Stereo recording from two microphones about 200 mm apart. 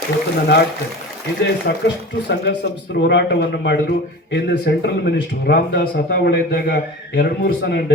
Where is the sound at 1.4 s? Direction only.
60° left (ahead or behind).